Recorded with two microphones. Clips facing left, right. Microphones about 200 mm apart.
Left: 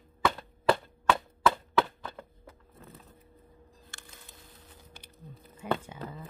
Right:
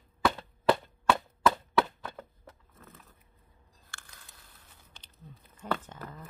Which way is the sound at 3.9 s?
20° left (ahead or behind).